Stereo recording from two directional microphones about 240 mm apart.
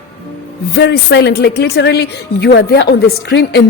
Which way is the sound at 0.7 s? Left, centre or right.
Left.